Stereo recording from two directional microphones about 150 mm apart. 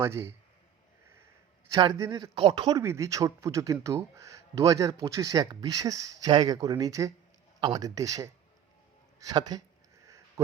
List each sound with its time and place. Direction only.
0.0 s a man's voice: 20° right (ahead or behind)
2.0 s speech: 25° right (ahead or behind)
2.8 s speech: 20° right (ahead or behind)
10.1 s sniff: 20° right (ahead or behind)